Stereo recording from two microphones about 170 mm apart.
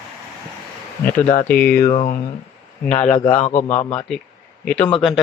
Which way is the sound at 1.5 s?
65° left (ahead or behind).